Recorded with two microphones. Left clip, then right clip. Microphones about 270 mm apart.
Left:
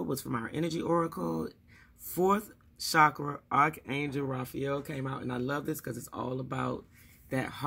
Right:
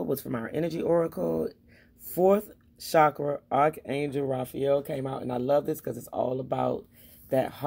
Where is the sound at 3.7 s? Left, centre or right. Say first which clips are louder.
Right 5 dB; centre.